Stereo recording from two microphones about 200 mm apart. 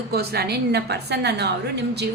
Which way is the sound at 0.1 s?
50° right (ahead or behind).